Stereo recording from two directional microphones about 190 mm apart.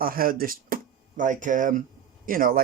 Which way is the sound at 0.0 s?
50° right (ahead or behind).